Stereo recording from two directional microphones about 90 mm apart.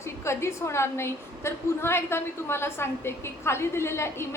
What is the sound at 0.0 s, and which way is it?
A woman's voice, 30° left (ahead or behind).